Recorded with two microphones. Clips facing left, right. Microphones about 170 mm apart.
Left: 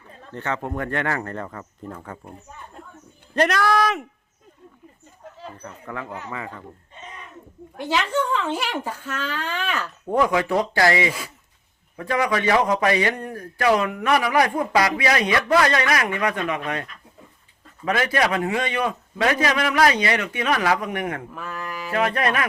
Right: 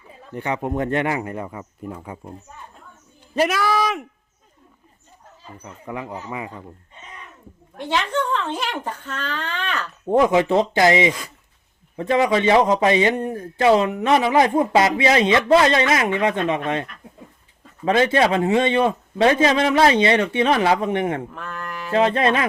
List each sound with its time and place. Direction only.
0.1 s speech: 10° right (ahead or behind)
3.3 s speech: 5° right (ahead or behind)
5.5 s speech: 15° right (ahead or behind)
7.8 s speech: 5° left (ahead or behind)
10.1 s speech: 25° right (ahead or behind)
17.8 s speech: 25° right (ahead or behind)
21.3 s mantra: 5° left (ahead or behind)
21.9 s speech: 25° right (ahead or behind)